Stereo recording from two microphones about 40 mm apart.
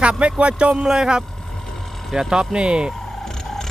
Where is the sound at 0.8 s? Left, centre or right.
Centre.